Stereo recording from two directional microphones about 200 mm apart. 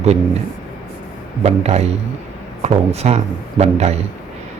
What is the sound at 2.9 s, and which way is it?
Speech, 30° right (ahead or behind).